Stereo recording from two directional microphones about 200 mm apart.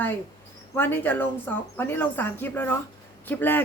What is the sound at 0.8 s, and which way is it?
A woman's voice, 10° left (ahead or behind).